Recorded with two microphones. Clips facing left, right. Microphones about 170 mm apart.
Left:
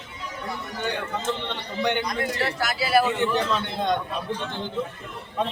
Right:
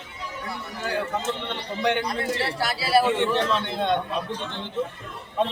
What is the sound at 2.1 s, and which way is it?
Speech, 30° right (ahead or behind).